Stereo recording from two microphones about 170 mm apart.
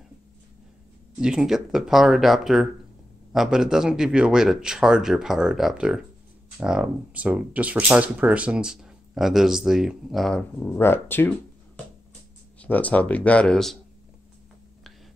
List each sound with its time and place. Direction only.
1.2 s speech: 5° right (ahead or behind); by 11.3 s 10° left (ahead or behind)
12.5 s speech: 10° left (ahead or behind)